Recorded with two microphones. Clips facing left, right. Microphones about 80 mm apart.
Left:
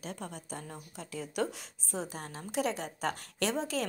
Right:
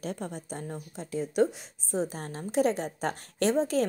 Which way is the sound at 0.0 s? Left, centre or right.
Right.